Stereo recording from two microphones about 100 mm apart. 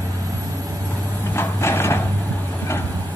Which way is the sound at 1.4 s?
25° left (ahead or behind).